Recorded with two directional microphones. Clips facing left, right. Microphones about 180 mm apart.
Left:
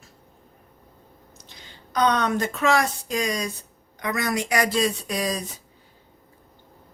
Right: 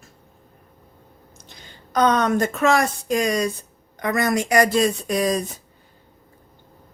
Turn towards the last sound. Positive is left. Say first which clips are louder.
# right 6 dB
turn(degrees=-50)  # may be behind; listen again after turning